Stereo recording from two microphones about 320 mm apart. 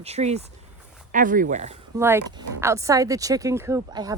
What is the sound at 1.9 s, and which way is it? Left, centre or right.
Speech, centre.